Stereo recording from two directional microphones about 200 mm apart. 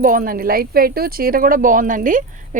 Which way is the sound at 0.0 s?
45° right (ahead or behind).